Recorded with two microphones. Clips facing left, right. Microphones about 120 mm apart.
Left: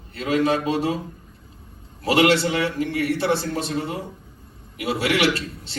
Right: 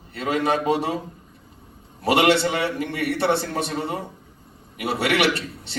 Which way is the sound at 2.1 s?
65° right (ahead or behind).